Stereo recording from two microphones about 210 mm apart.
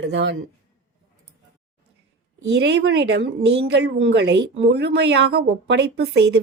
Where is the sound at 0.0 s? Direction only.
60° right (ahead or behind).